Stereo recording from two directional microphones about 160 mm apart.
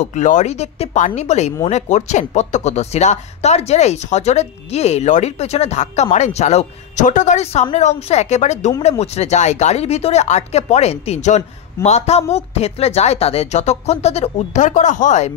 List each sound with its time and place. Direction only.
0.0 s speech: 50° left (ahead or behind)